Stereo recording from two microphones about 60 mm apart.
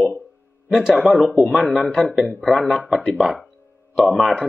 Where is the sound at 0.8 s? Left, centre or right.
Centre.